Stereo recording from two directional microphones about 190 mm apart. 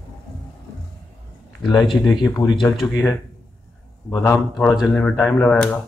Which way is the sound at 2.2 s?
20° left (ahead or behind).